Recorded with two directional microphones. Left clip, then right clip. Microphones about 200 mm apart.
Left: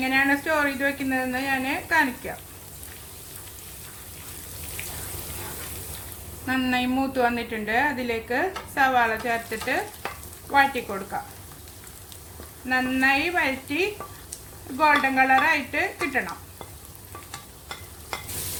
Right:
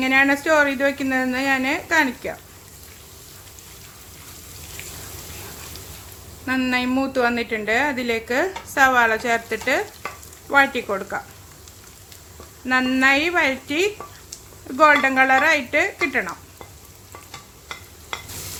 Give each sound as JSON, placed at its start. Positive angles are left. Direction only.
{"t": 0.0, "sound": "a woman's voice", "side_deg": -40}
{"t": 6.4, "sound": "a woman's voice", "side_deg": -25}
{"t": 12.6, "sound": "a woman's voice", "side_deg": -35}